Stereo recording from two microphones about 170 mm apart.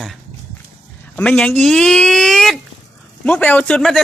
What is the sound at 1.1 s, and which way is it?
Speech, 5° left (ahead or behind).